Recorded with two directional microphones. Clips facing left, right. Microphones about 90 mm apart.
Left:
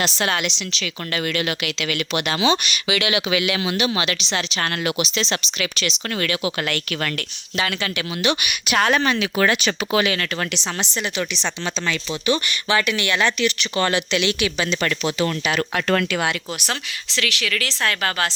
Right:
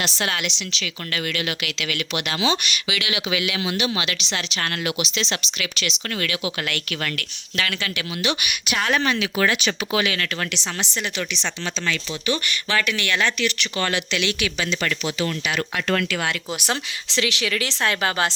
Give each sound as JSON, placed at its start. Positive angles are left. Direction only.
{"t": 0.3, "sound": "speech", "side_deg": 35}
{"t": 3.1, "sound": "speech", "side_deg": 60}
{"t": 7.5, "sound": "speech", "side_deg": 20}
{"t": 8.2, "sound": "speech", "side_deg": 50}
{"t": 8.9, "sound": "speech", "side_deg": 40}
{"t": 10.6, "sound": "speech", "side_deg": 20}
{"t": 14.8, "sound": "speech", "side_deg": 45}
{"t": 16.0, "sound": "speech", "side_deg": 20}
{"t": 17.2, "sound": "a woman's voice", "side_deg": -25}